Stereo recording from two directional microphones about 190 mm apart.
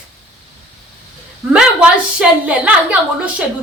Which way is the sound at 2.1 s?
5° right (ahead or behind).